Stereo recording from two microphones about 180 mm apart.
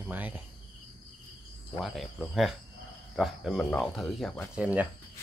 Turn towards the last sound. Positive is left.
turn(degrees=-10)  # may be behind; listen again after turning